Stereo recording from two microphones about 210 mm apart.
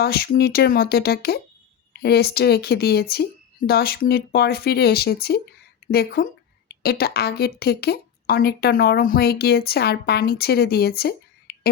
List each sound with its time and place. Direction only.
0.0 s a woman's voice: 50° left (ahead or behind)